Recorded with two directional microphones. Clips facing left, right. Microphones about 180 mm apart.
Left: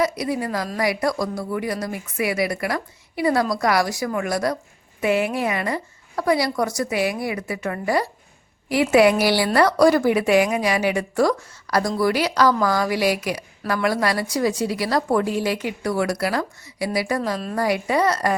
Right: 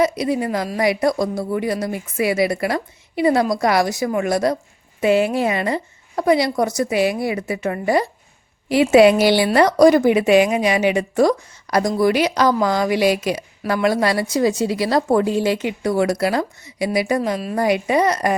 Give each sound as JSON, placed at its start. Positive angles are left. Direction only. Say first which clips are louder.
{"t": 0.0, "sound": "a woman's voice", "louder": "right 4 dB", "side_deg": -20}